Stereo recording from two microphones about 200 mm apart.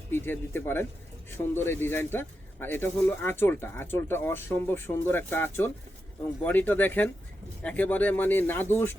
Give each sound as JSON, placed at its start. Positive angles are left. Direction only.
{"t": 0.1, "sound": "a man's voice", "side_deg": 10}